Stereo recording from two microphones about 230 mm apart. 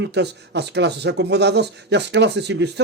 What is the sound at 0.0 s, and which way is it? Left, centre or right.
Speech, right.